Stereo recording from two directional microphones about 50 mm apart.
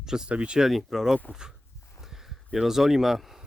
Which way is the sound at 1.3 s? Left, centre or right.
Centre.